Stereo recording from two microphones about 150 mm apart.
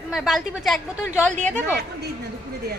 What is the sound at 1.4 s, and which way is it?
Speech, 55° right (ahead or behind).